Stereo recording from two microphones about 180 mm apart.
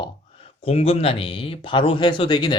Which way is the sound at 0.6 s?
35° left (ahead or behind).